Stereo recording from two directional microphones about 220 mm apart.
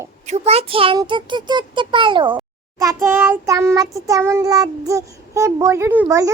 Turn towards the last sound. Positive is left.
turn(degrees=-10)  # may be behind; listen again after turning